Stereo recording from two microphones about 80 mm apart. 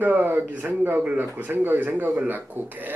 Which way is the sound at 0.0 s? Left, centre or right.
Right.